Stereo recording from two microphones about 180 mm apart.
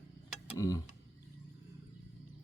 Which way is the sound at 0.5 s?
20° left (ahead or behind).